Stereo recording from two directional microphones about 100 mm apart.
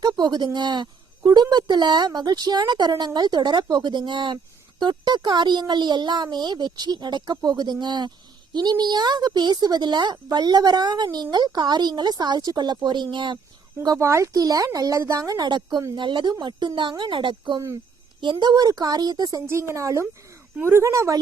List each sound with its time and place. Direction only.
0.0 s a woman's voice: 45° right (ahead or behind)
14.0 s a woman's voice: 30° right (ahead or behind)